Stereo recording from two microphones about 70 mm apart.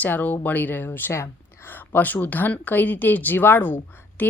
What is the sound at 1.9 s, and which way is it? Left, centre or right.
Speech, left.